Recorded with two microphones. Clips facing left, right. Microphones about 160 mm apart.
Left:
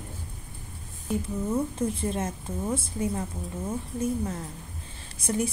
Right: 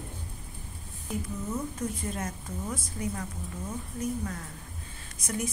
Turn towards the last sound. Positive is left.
turn(degrees=30)  # may be behind; listen again after turning